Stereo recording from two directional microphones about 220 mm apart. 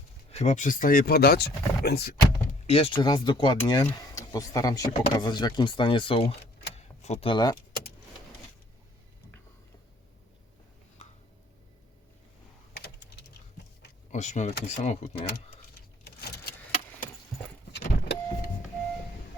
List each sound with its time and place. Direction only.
0.3 s speech: 30° left (ahead or behind); by 2.6 s 45° left (ahead or behind)
2.6 s speech: 25° left (ahead or behind)
12.7 s typing: 50° left (ahead or behind)
14.1 s speech: 35° left (ahead or behind)
16.0 s vehicle: 45° left (ahead or behind)
17.7 s vehicle: 50° left (ahead or behind)